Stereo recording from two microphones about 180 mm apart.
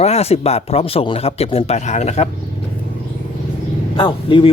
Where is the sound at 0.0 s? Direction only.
35° left (ahead or behind).